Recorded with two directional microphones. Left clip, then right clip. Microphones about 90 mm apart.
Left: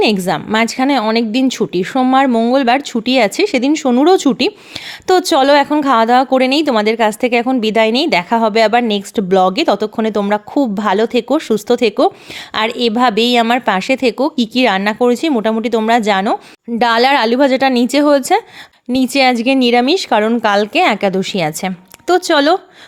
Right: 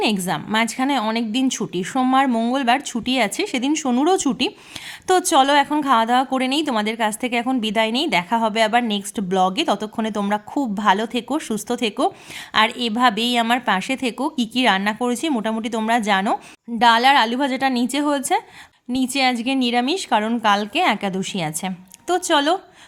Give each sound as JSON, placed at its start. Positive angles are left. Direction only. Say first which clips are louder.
{"t": 0.0, "sound": "a woman's voice", "louder": "left 8 dB", "side_deg": 30}
{"t": 16.7, "sound": "a woman's voice", "louder": "left 3 dB", "side_deg": 40}